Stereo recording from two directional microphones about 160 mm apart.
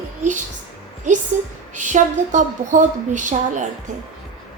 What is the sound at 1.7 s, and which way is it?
A woman's voice, 50° right (ahead or behind).